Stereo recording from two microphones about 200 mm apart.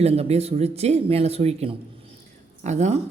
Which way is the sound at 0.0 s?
30° right (ahead or behind).